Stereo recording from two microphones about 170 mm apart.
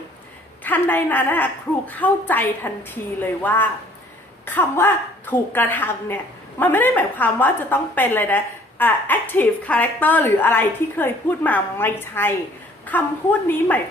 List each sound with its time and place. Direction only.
0.6 s a woman's voice: 10° left (ahead or behind)